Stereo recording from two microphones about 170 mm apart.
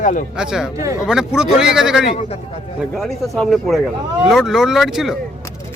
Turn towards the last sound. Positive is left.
turn(degrees=0)  # may be behind; listen again after turning